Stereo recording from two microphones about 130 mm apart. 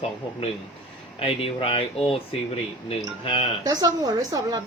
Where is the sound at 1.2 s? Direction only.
45° left (ahead or behind).